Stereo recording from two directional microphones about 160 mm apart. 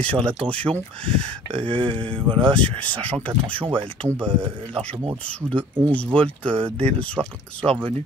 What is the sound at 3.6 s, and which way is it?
Speech, 35° right (ahead or behind).